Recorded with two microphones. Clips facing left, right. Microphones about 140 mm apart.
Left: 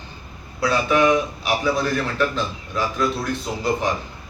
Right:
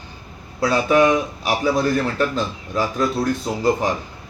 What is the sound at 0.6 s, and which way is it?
A man's voice, 40° right (ahead or behind).